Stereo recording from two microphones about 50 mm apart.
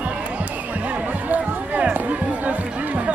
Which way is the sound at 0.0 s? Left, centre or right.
Right.